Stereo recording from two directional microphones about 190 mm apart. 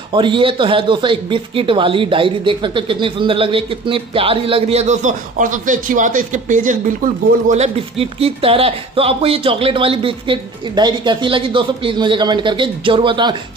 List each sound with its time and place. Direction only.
0.1 s speech: 25° right (ahead or behind)